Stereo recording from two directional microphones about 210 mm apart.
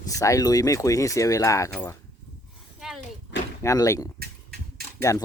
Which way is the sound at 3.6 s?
15° left (ahead or behind).